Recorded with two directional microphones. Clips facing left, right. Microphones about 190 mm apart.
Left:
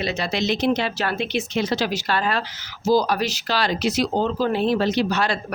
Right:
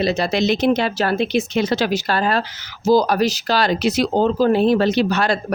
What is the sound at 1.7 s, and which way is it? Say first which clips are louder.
Speech: right 4 dB; 60° right (ahead or behind).